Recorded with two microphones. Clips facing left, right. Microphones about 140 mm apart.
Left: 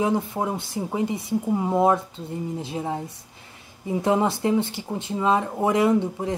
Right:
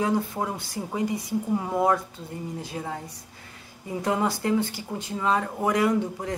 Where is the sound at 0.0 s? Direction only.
20° left (ahead or behind).